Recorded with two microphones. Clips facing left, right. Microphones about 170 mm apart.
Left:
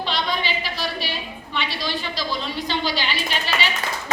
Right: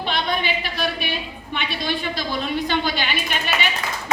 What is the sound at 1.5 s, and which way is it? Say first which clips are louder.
A woman's voice: right 1 dB; 55° right (ahead or behind).